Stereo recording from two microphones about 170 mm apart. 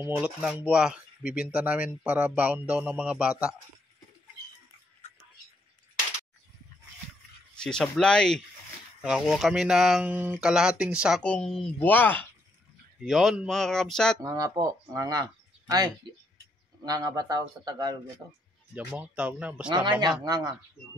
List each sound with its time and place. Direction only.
0.0 s speech: 10° right (ahead or behind)
7.5 s speech: 5° left (ahead or behind)
13.0 s speech: centre (ahead or behind)
14.2 s speech: 20° right (ahead or behind)
18.8 s speech: 5° right (ahead or behind)
19.7 s speech: 25° right (ahead or behind)